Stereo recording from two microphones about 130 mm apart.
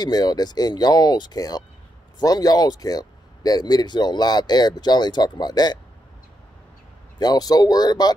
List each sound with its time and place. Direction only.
0.0 s speech: 30° left (ahead or behind)
7.2 s speech: 30° left (ahead or behind)